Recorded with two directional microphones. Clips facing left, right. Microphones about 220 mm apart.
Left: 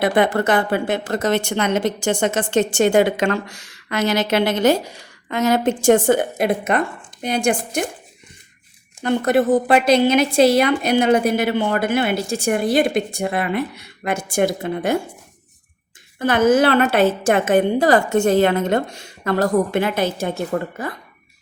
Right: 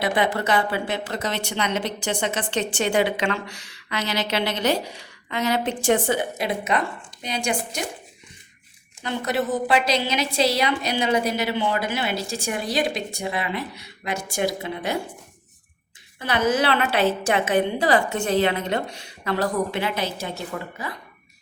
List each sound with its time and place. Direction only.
0.0 s a woman's voice: 50° left (ahead or behind)
9.0 s a woman's voice: 50° left (ahead or behind)
16.1 s a woman's voice: 50° left (ahead or behind)